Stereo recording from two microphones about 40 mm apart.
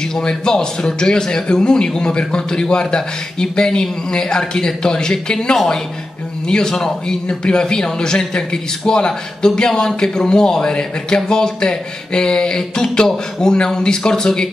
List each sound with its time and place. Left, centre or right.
0.0 s a man's voice: centre